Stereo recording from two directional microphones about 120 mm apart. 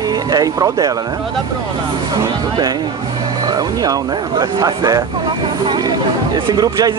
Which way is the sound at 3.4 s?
30° right (ahead or behind).